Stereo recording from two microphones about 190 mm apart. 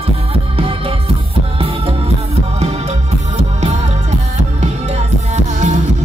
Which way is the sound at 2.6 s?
35° right (ahead or behind).